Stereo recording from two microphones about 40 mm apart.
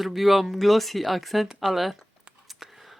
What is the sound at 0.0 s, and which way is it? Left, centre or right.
Speech, centre.